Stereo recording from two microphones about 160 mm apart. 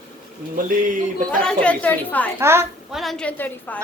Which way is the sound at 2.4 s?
15° right (ahead or behind).